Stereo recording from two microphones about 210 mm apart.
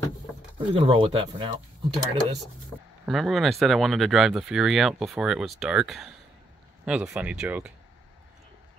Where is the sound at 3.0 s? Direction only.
Centre (ahead or behind).